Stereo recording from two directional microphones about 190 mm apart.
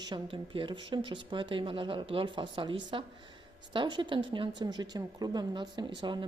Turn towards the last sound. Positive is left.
turn(degrees=-25)  # may be behind; listen again after turning